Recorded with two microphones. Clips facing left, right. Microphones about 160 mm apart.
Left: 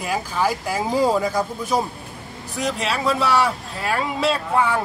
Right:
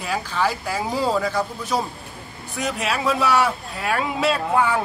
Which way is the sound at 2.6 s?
5° right (ahead or behind).